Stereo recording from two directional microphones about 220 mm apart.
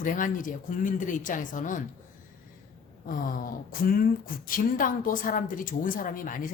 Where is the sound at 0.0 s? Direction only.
35° left (ahead or behind).